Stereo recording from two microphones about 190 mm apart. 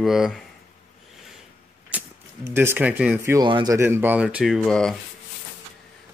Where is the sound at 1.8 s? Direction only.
10° right (ahead or behind).